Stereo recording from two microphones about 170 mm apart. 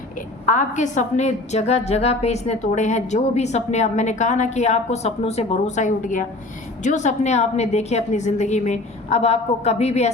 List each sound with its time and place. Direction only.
0.4 s a woman's voice: 50° left (ahead or behind)